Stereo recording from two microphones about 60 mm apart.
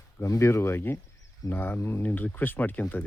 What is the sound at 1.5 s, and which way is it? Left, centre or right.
Speech, left.